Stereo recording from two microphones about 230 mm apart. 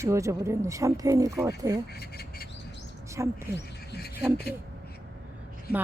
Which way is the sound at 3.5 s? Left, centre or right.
Left.